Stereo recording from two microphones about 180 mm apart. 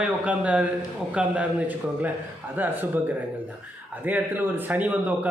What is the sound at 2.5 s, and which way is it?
A man's voice, 10° right (ahead or behind).